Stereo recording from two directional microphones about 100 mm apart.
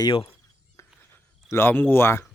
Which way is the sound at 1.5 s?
25° left (ahead or behind).